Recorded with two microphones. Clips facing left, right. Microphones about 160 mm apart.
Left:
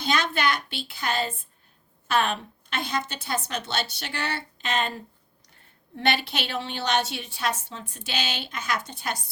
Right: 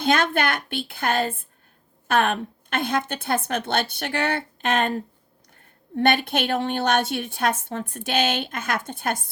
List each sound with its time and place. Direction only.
0.0 s a woman's voice: 55° right (ahead or behind)